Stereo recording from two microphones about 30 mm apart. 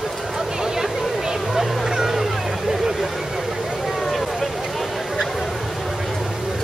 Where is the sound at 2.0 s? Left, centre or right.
Centre.